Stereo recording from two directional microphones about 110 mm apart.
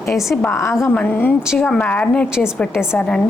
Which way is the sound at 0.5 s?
25° left (ahead or behind).